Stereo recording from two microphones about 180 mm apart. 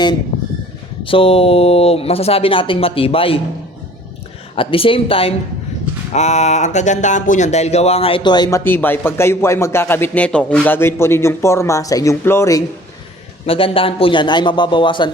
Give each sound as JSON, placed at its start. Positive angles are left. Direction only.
{"t": 1.0, "sound": "speech", "side_deg": 30}
{"t": 4.5, "sound": "speech", "side_deg": 30}
{"t": 13.4, "sound": "a man's voice", "side_deg": 30}